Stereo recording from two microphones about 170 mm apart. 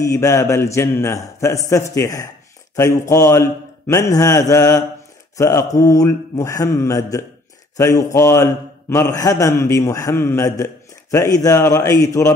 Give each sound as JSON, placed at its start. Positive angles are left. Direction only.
{"t": 0.0, "sound": "a man's voice", "side_deg": 15}